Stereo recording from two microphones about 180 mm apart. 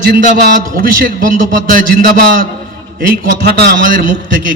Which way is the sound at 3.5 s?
60° right (ahead or behind).